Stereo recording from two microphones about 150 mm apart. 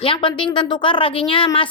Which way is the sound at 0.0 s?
35° left (ahead or behind).